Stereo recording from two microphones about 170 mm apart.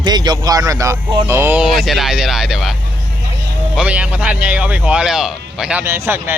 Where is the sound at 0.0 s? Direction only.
25° right (ahead or behind).